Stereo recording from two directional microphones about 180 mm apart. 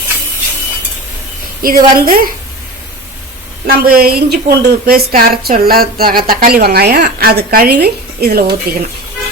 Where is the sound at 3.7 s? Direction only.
55° right (ahead or behind).